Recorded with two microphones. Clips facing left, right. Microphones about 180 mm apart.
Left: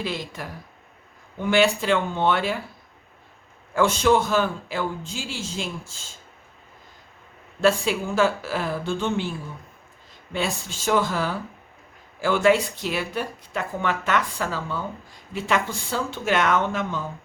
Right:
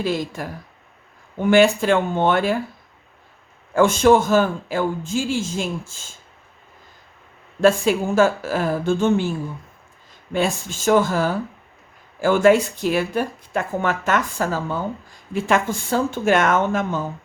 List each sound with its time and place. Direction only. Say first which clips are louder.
0.0 s speech: right 7 dB; 45° right (ahead or behind)
3.8 s speech: right 5 dB; 50° right (ahead or behind)
7.6 s speech: right 4 dB; 45° right (ahead or behind)
10.3 s speech: right 6 dB; 50° right (ahead or behind)